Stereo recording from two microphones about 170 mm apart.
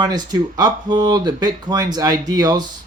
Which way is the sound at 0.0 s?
25° right (ahead or behind).